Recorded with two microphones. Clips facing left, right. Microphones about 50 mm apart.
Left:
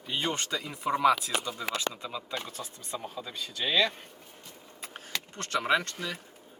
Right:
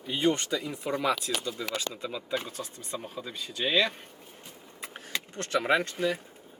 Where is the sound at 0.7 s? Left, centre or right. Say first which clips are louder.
Left 6 dB; centre.